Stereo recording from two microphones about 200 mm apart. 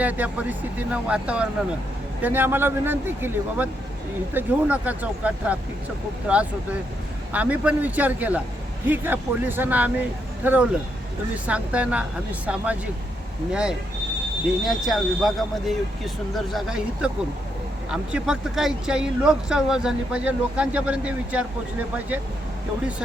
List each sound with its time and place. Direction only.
0.0 s speech: 5° right (ahead or behind)